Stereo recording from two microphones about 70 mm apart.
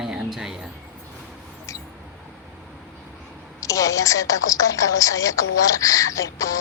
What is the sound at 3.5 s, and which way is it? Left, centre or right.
A woman's voice, left.